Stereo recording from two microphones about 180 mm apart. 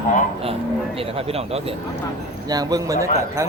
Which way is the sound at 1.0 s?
30° right (ahead or behind).